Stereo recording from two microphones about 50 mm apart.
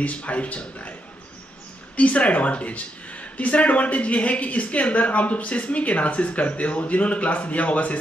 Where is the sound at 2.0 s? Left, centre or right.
Left.